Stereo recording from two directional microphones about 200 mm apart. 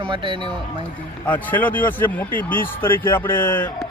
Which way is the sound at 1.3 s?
10° left (ahead or behind).